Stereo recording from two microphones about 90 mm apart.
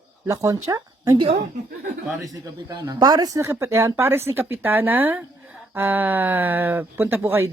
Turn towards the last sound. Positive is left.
turn(degrees=-25)  # may be behind; listen again after turning